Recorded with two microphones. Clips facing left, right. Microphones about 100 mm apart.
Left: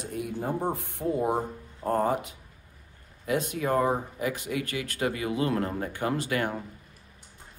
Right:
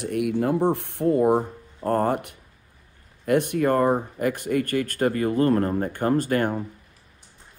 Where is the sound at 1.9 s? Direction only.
55° right (ahead or behind).